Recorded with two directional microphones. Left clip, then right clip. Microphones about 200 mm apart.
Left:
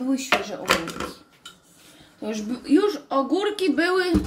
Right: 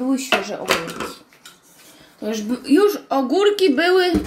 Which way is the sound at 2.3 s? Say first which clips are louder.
Right 3 dB; 40° right (ahead or behind).